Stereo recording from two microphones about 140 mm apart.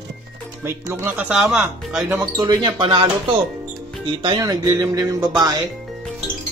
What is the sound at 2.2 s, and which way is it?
Speech, 30° right (ahead or behind).